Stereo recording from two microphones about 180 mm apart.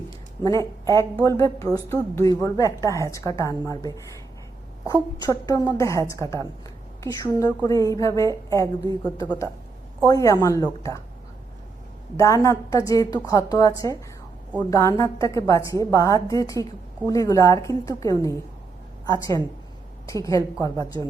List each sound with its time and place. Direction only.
0.4 s a woman's voice: 15° left (ahead or behind)
5.3 s a woman's voice: 20° left (ahead or behind)
12.1 s a woman's voice: 15° left (ahead or behind)